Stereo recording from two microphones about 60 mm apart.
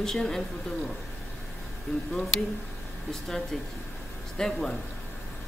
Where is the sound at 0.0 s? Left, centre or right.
Centre.